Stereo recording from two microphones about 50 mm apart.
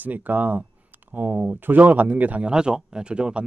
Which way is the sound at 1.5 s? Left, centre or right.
Right.